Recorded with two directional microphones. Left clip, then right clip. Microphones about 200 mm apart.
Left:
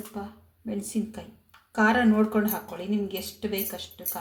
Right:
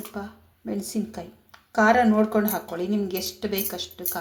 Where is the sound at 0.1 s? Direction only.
20° right (ahead or behind).